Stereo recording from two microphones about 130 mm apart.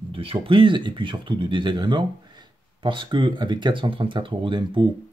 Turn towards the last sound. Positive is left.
turn(degrees=-35)  # may be behind; listen again after turning